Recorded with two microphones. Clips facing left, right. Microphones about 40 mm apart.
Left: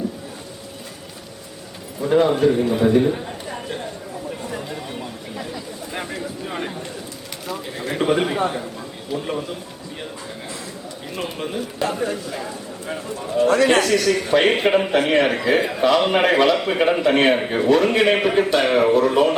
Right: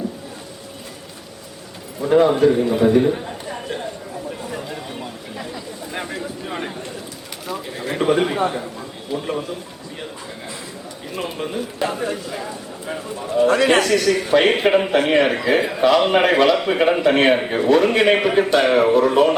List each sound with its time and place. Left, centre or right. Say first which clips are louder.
2.0 s a man's voice: right 2 dB; centre
4.4 s a sound: even; centre
7.4 s a man's voice: right 1 dB; centre
11.1 s a man's voice: right 1 dB; centre
13.5 s a man's voice: left 1 dB; right
13.7 s a man's voice: right 1 dB; centre